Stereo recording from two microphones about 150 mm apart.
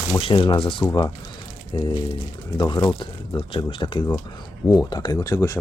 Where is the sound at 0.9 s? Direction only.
25° left (ahead or behind).